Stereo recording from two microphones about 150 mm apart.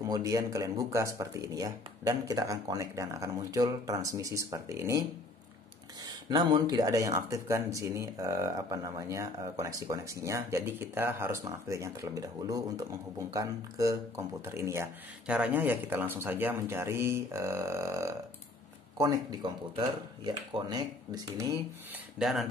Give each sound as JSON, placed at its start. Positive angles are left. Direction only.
{"t": 0.0, "sound": "speech", "side_deg": -25}
{"t": 6.0, "sound": "speech", "side_deg": -30}
{"t": 22.2, "sound": "speech", "side_deg": 0}